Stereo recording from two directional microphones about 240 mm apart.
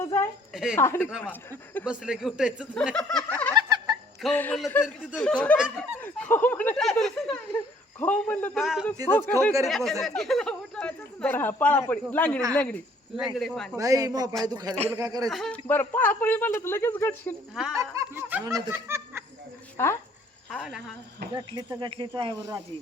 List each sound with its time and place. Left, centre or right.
0.0 s a sound: centre
0.5 s speech: centre
0.8 s speech: centre
1.8 s speech: centre
3.6 s fowl: centre
4.2 s speech: centre
9.0 s speech: centre
13.7 s speech: centre
15.3 s speech: centre
17.7 s snicker: centre
19.7 s speech: centre
20.5 s speech: centre
21.3 s speech: centre